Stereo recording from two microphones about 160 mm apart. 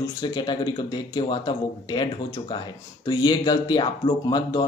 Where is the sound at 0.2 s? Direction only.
25° left (ahead or behind).